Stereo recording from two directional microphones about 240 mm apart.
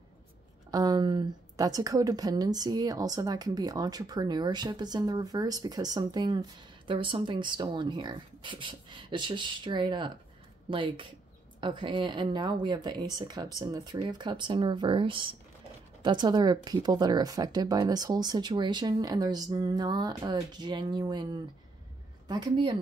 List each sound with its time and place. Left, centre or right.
0.7 s a woman's voice: centre